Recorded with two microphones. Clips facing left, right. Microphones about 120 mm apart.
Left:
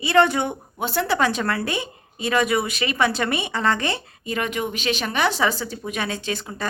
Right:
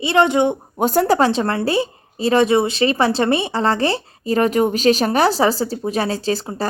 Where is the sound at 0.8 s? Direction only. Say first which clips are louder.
Right 7 dB; 40° right (ahead or behind).